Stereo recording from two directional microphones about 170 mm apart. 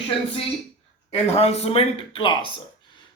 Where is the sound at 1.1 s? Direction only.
35° left (ahead or behind).